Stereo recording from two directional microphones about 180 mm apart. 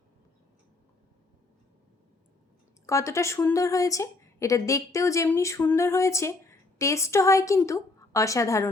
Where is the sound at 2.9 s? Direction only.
15° left (ahead or behind).